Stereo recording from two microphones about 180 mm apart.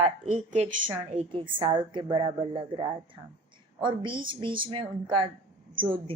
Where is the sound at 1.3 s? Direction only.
25° right (ahead or behind).